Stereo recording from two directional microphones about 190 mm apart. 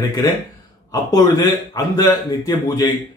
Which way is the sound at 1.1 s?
20° left (ahead or behind).